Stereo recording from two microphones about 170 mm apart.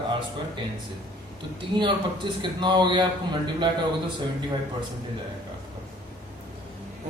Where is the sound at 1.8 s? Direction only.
30° right (ahead or behind).